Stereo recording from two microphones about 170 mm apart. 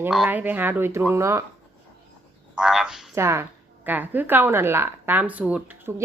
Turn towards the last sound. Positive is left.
turn(degrees=-10)  # may be behind; listen again after turning